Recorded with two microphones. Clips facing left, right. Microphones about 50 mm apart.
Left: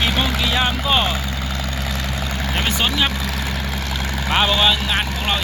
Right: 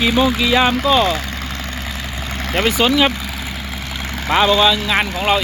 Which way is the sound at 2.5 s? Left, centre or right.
Right.